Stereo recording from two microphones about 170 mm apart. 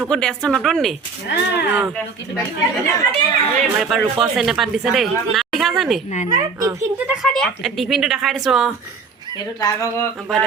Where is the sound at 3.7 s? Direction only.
Centre (ahead or behind).